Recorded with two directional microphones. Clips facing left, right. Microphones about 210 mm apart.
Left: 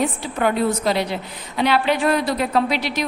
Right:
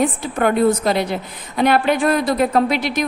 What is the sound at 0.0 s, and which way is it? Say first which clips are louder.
A woman's voice: right 3 dB; 50° right (ahead or behind).